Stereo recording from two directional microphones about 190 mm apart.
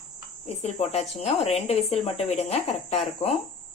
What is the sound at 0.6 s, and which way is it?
Speech, 35° left (ahead or behind).